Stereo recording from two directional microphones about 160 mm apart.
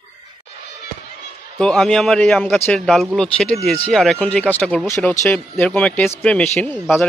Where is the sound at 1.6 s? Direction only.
5° left (ahead or behind).